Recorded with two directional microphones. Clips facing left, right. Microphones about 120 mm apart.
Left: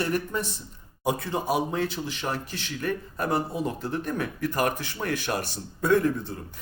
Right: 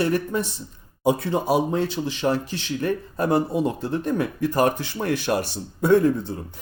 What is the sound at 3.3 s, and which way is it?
Speech, 20° right (ahead or behind).